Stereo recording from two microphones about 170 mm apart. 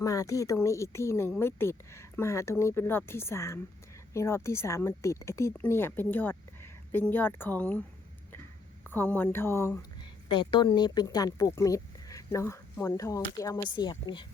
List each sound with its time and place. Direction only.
0.0 s speech: 20° left (ahead or behind)
8.9 s speech: 10° left (ahead or behind)
10.0 s speech: 30° left (ahead or behind)